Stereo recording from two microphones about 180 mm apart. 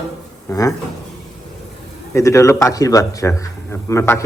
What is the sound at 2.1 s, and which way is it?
A man's voice, 15° left (ahead or behind).